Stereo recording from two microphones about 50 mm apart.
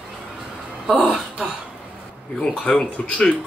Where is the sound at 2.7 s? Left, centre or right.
Left.